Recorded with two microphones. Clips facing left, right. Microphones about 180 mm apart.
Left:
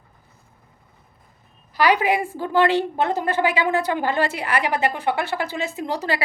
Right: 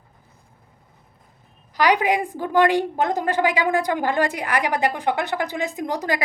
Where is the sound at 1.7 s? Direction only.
15° right (ahead or behind).